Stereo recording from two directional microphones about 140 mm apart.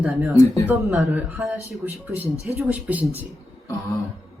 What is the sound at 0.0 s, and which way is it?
Speech, centre (ahead or behind).